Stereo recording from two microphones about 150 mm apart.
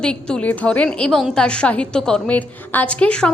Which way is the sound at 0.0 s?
5° left (ahead or behind).